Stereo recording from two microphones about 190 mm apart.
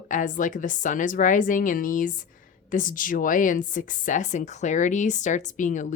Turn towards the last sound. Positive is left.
turn(degrees=40)  # may be behind; listen again after turning